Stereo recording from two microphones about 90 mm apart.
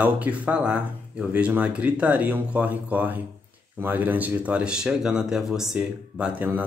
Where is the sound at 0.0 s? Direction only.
15° right (ahead or behind).